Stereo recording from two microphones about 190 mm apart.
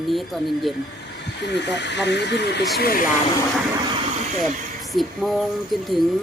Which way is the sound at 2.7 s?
50° left (ahead or behind).